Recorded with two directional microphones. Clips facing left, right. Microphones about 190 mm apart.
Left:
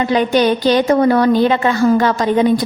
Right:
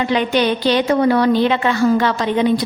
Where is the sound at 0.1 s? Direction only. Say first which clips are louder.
Left 4 dB; 45° left (ahead or behind).